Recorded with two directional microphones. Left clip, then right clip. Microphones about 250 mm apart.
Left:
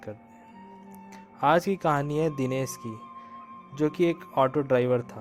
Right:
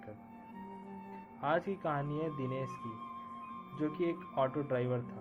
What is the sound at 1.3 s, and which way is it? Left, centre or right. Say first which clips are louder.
Speech: left 11 dB; left.